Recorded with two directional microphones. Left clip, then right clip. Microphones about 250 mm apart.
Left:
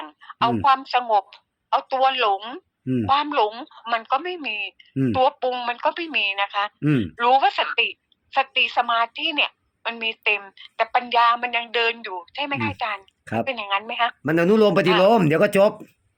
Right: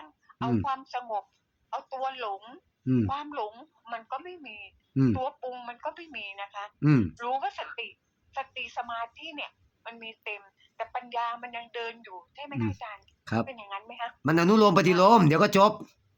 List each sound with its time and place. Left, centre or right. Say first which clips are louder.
0.0 s a sound: left 13 dB; left
0.6 s a woman's voice: left 14 dB; left
2.8 s speech: left 3 dB; centre
3.1 s a woman's voice: left 14 dB; left
6.7 s speech: left 3 dB; centre
7.1 s a woman's voice: left 14 dB; left
14.3 s speech: left 3 dB; right